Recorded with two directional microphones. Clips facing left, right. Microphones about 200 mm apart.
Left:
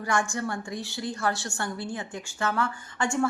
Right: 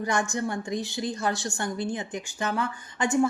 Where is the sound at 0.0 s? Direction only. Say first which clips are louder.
Right 1 dB; 20° right (ahead or behind).